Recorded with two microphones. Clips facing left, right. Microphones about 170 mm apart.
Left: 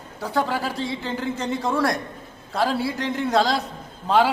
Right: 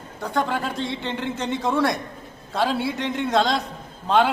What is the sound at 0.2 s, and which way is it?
A man's voice, 5° left (ahead or behind).